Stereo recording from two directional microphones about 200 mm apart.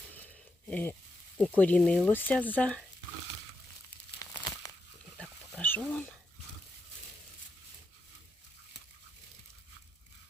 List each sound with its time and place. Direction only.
0.7 s speech: 10° left (ahead or behind)
4.2 s crumpling: 20° left (ahead or behind)
5.1 s a sound: 5° left (ahead or behind)